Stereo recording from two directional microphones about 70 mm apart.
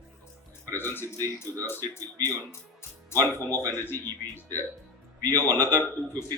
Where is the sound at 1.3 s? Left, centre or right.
Left.